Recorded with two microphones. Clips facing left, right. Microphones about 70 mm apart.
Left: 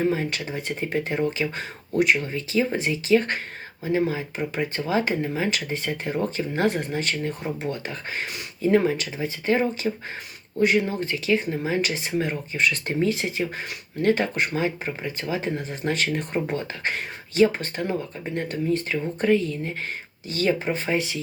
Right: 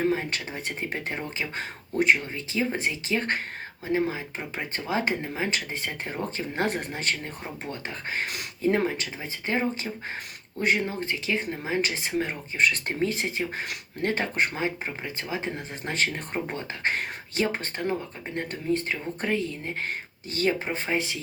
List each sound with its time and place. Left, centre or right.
0.0 s speech: right